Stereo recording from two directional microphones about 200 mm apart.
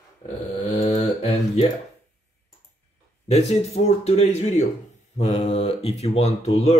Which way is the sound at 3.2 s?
30° left (ahead or behind).